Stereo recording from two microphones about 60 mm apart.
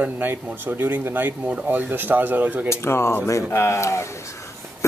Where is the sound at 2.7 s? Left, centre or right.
Left.